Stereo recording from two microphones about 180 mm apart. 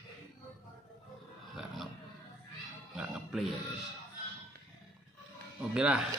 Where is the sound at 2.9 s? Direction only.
5° right (ahead or behind).